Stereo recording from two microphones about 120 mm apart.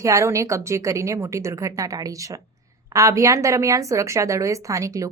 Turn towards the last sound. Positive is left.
turn(degrees=-30)  # may be behind; listen again after turning